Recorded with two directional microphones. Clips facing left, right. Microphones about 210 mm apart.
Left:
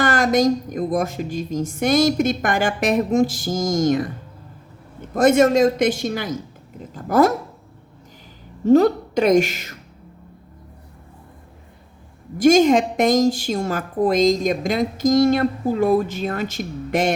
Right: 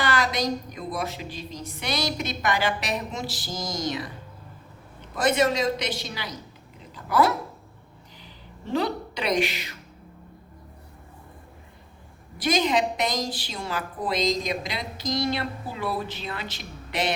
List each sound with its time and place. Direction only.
0.0 s a woman's voice: 45° left (ahead or behind)
8.6 s a woman's voice: 45° left (ahead or behind)
12.4 s a woman's voice: 45° left (ahead or behind)